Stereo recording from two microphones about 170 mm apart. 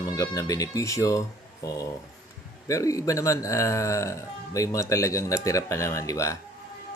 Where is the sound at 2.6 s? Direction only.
20° left (ahead or behind).